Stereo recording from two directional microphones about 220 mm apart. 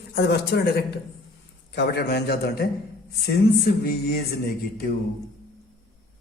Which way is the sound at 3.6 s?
45° left (ahead or behind).